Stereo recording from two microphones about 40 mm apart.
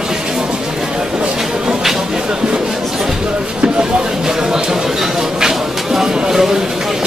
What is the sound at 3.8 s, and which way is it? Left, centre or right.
Music, centre.